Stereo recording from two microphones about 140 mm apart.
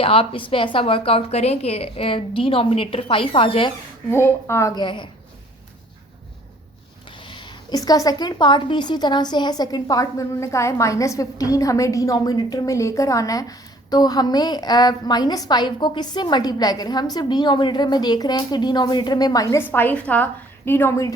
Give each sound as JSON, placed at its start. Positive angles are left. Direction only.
{"t": 0.0, "sound": "a woman's voice", "side_deg": 40}
{"t": 4.1, "sound": "a woman's voice", "side_deg": 20}
{"t": 4.8, "sound": "a woman's voice", "side_deg": 35}
{"t": 7.2, "sound": "a woman's voice", "side_deg": 35}
{"t": 19.6, "sound": "a woman's voice", "side_deg": 15}